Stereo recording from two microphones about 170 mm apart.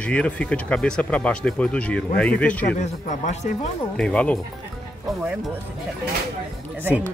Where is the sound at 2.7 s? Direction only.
45° left (ahead or behind).